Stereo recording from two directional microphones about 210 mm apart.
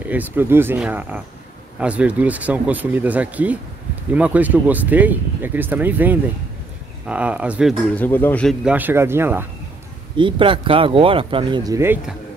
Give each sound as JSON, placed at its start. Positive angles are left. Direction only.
{"t": 0.0, "sound": "speech", "side_deg": -10}
{"t": 7.9, "sound": "speech", "side_deg": 10}
{"t": 8.6, "sound": "speech", "side_deg": -10}
{"t": 10.1, "sound": "speech", "side_deg": -25}